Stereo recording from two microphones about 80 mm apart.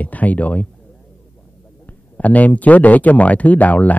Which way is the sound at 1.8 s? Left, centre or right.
Centre.